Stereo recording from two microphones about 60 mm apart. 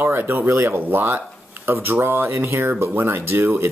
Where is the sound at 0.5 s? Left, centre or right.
Right.